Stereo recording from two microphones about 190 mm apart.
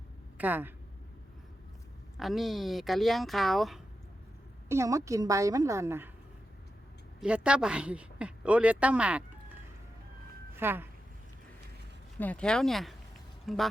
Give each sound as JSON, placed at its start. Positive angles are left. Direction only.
{"t": 0.3, "sound": "speech", "side_deg": -10}
{"t": 2.1, "sound": "speech", "side_deg": 0}
{"t": 4.7, "sound": "speech", "side_deg": -15}
{"t": 7.2, "sound": "speech", "side_deg": -5}
{"t": 10.5, "sound": "speech", "side_deg": -10}
{"t": 12.2, "sound": "speech", "side_deg": 5}